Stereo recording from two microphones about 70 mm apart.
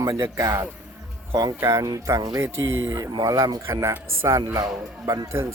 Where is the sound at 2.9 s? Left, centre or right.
Right.